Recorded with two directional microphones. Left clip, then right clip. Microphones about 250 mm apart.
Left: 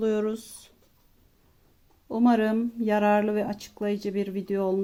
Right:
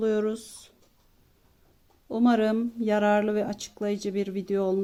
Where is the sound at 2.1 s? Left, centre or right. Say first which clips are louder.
Even; centre.